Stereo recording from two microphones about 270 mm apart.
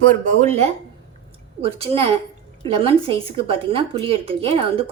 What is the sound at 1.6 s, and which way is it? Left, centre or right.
Speech, right.